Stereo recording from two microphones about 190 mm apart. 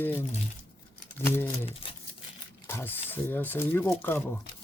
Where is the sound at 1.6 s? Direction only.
30° left (ahead or behind).